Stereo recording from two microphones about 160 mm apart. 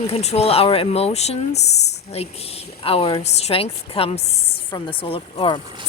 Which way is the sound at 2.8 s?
35° left (ahead or behind).